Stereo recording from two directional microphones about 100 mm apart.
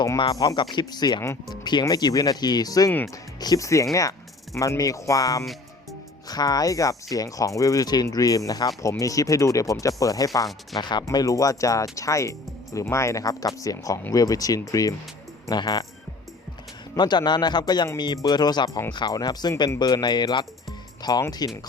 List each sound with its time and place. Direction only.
0.3 s speech: 35° left (ahead or behind)
0.5 s speech: 50° left (ahead or behind)
10.8 s speech: 45° left (ahead or behind)
11.0 s speech: 35° left (ahead or behind)
17.0 s speech: 45° left (ahead or behind)